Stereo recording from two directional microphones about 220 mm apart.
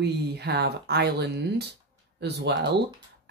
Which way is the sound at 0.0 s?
50° right (ahead or behind).